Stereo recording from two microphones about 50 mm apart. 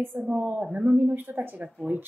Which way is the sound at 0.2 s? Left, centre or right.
Right.